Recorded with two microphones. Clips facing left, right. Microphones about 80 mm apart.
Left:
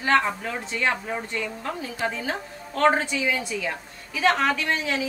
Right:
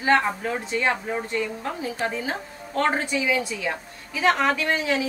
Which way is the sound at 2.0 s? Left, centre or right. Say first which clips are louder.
Even; centre.